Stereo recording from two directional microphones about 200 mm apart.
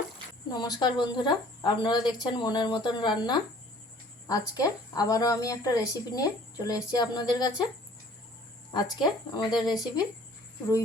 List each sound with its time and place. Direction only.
0.5 s a woman's voice: 20° left (ahead or behind)
8.7 s speech: 20° left (ahead or behind)